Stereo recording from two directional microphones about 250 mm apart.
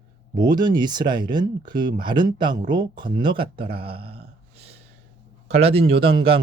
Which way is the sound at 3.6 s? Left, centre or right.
Right.